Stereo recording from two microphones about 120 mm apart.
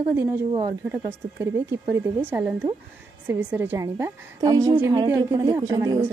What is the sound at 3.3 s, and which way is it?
Speech, 15° right (ahead or behind).